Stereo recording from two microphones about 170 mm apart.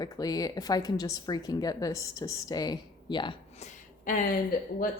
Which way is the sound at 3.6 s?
45° left (ahead or behind).